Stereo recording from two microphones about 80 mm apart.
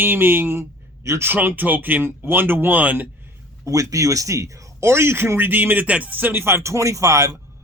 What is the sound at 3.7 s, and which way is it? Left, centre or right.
Speech, right.